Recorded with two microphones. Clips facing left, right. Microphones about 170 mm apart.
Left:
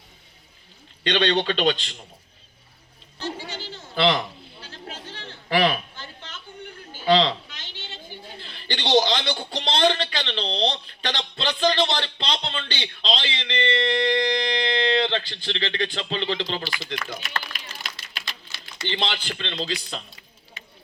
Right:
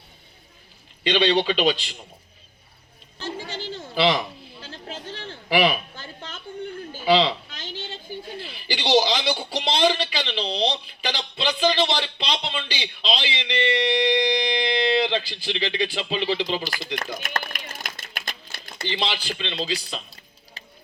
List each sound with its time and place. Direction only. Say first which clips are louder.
1.0 s a man's voice: right 2 dB; 5° right (ahead or behind)
3.9 s a man's voice: even; 5° right (ahead or behind)
5.5 s a man's voice: right 1 dB; 5° right (ahead or behind)
7.0 s speech: even; 5° right (ahead or behind)
8.4 s a man's voice: right 1 dB; 5° right (ahead or behind)
16.6 s speech: right 1 dB; 45° right (ahead or behind)
17.2 s a sound: right 2 dB; 45° right (ahead or behind)
18.9 s a man's voice: even; 10° right (ahead or behind)
20.1 s a sound: even; 35° right (ahead or behind)